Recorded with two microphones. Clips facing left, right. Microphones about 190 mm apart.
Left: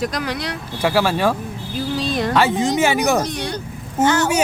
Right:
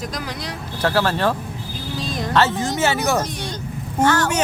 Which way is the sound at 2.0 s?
70° left (ahead or behind).